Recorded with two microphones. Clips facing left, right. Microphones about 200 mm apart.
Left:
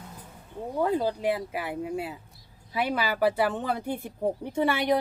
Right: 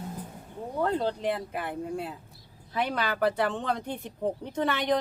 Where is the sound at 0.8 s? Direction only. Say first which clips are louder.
Left 2 dB; 10° left (ahead or behind).